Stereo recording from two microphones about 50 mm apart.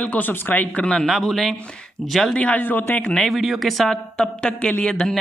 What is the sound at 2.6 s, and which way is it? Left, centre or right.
Speech, left.